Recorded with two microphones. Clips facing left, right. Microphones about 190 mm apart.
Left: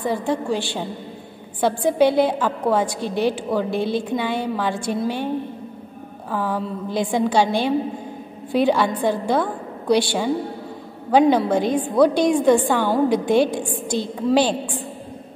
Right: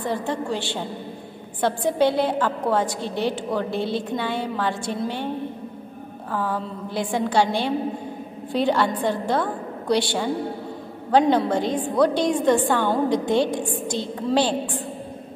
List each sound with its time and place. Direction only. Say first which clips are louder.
0.0 s a woman's voice: left 3 dB; 10° left (ahead or behind)
6.3 s a woman's voice: left 3 dB; 10° left (ahead or behind)